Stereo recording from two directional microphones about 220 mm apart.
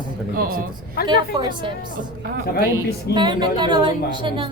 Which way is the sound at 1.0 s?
20° right (ahead or behind).